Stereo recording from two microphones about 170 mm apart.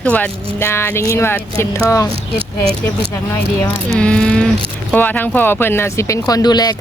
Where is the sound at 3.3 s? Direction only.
25° left (ahead or behind).